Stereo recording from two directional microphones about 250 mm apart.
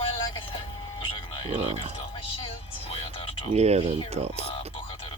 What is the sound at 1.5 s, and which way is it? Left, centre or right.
Speech, right.